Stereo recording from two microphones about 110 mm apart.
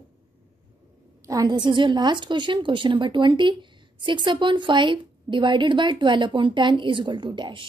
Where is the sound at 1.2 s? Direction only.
30° right (ahead or behind).